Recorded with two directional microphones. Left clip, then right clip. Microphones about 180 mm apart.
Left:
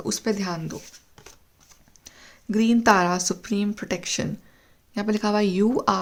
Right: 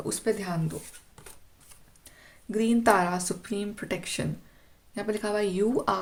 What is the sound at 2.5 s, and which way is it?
Speech, 45° left (ahead or behind).